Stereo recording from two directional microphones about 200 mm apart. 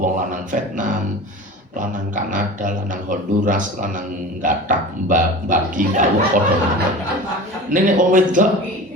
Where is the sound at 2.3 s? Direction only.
40° right (ahead or behind).